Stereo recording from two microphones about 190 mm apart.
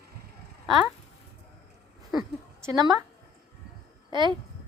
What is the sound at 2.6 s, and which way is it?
Speech, 20° right (ahead or behind).